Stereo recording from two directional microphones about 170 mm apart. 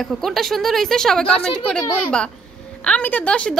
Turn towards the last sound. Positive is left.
turn(degrees=5)  # may be behind; listen again after turning